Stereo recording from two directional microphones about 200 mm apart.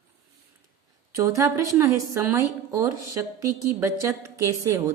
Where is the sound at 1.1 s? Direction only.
15° right (ahead or behind).